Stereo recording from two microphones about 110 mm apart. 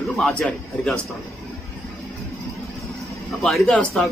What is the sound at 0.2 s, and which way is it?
Speech, 10° left (ahead or behind).